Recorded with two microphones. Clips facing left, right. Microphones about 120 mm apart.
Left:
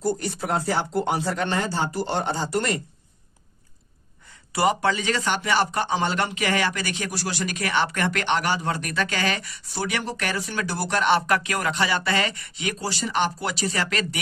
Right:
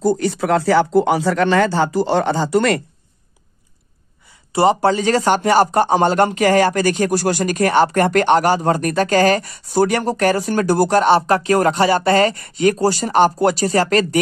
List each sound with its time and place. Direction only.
0.2 s speech: 90° right
4.5 s a man's voice: 30° right (ahead or behind)